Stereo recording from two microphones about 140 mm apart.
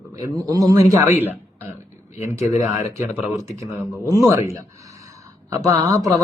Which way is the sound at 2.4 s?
55° left (ahead or behind).